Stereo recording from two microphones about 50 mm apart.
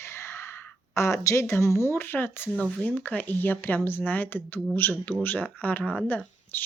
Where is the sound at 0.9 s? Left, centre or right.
Left.